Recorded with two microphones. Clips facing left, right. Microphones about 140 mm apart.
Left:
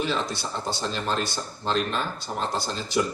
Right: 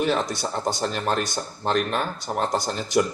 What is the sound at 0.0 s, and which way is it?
A man's voice, 50° right (ahead or behind).